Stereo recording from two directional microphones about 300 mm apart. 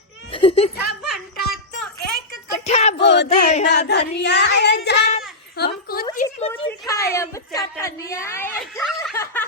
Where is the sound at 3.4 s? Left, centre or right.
Left.